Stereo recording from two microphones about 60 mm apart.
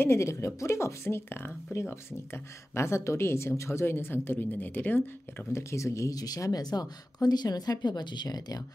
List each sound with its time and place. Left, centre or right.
0.0 s speech: left
5.5 s speech: left